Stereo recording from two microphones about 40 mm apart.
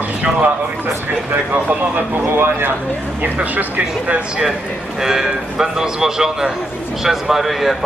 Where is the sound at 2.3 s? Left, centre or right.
Right.